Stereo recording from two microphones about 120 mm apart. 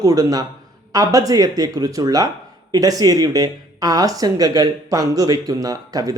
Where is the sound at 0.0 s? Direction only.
30° right (ahead or behind).